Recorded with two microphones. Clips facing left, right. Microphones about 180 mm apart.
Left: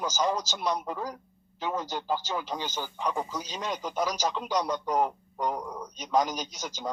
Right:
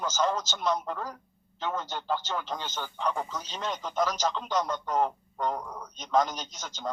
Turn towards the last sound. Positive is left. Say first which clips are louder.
# left 1 dB
turn(degrees=10)  # may be behind; listen again after turning